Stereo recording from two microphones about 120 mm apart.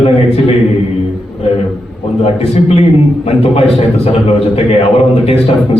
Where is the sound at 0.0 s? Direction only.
55° left (ahead or behind).